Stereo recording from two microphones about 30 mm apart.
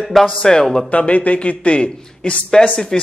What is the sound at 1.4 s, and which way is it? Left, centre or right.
Speech, left.